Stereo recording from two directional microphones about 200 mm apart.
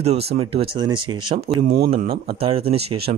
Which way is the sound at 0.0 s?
30° right (ahead or behind).